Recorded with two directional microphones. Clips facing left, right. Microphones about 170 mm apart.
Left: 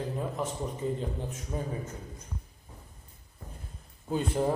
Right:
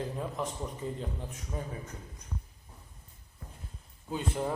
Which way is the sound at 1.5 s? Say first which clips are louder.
Left 3 dB; 30° left (ahead or behind).